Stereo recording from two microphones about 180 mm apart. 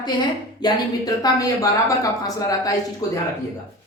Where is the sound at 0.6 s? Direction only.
20° left (ahead or behind).